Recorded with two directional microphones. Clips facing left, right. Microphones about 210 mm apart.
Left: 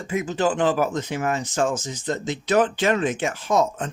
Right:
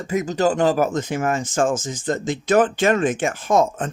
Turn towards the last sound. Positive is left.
turn(degrees=-50)  # may be behind; listen again after turning